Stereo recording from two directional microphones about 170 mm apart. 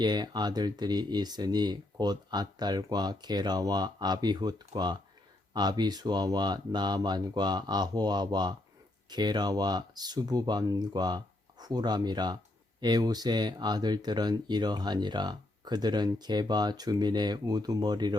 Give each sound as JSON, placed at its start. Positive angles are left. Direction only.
{"t": 0.0, "sound": "speech", "side_deg": -25}